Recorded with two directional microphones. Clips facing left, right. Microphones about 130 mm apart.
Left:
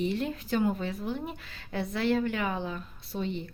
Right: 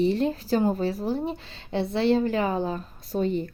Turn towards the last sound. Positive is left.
turn(degrees=-45)  # may be behind; listen again after turning